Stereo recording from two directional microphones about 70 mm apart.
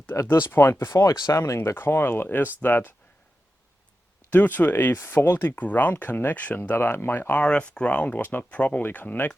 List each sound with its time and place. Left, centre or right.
0.3 s speech: left
1.0 s speech: left
1.4 s speech: left
4.3 s speech: left
7.3 s speech: centre